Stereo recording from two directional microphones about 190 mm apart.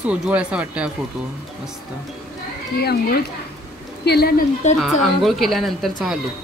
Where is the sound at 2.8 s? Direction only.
55° left (ahead or behind).